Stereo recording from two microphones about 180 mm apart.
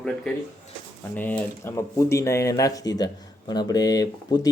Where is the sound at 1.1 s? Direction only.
10° left (ahead or behind).